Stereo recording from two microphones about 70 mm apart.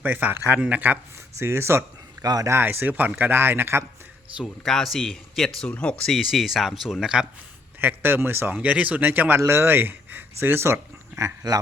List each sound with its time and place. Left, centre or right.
0.0 s speech: right
1.4 s speech: right
2.2 s speech: right
2.5 s speech: right
4.4 s speech: centre
6.1 s speech: centre
7.8 s speech: right
8.5 s speech: centre
9.4 s speech: right